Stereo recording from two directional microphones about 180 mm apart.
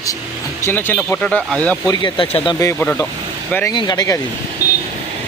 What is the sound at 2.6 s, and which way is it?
Speech, 15° left (ahead or behind).